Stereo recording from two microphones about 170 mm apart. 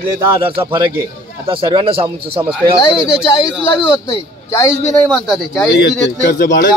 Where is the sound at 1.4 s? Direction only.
30° right (ahead or behind).